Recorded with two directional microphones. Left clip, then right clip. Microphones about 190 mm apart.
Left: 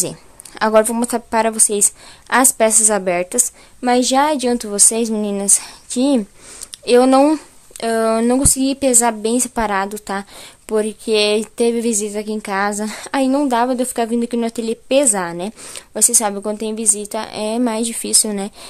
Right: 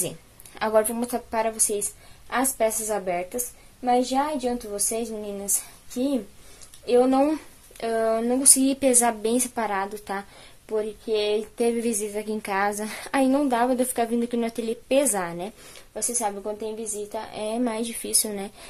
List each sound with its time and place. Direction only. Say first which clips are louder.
0.6 s a woman's voice: left 8 dB; 35° left (ahead or behind)
6.8 s a woman's voice: left 8 dB; 50° left (ahead or behind)
7.2 s speech: left 10 dB; 40° left (ahead or behind)
10.7 s speech: left 8 dB; 45° left (ahead or behind)